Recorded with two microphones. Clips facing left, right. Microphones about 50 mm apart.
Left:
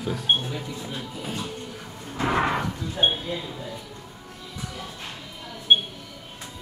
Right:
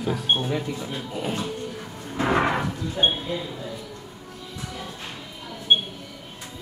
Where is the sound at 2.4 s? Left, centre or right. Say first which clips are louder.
Right 1 dB; centre.